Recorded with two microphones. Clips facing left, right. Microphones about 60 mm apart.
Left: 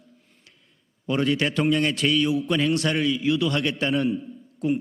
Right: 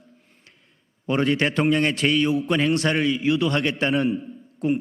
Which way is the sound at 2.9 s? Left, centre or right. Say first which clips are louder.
Right 2 dB; right.